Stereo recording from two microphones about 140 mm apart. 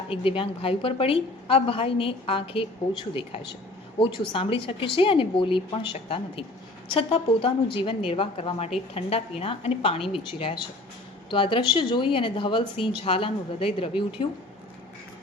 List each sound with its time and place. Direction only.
0.1 s a woman's voice: 40° left (ahead or behind)